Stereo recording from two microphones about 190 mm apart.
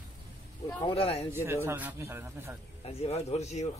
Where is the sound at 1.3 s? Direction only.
10° right (ahead or behind).